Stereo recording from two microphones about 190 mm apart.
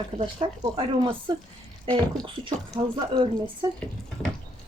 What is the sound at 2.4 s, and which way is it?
Speech, 25° right (ahead or behind).